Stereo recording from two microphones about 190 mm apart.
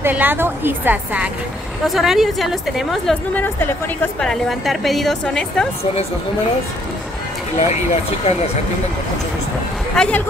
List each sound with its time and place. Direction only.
0.0 s a woman's voice: 10° right (ahead or behind)
3.4 s a woman's voice: 10° left (ahead or behind)
7.5 s speech: 35° left (ahead or behind)
10.0 s a woman's voice: 5° left (ahead or behind)